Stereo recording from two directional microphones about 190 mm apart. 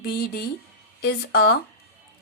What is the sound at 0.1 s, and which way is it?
A woman's voice, 55° left (ahead or behind).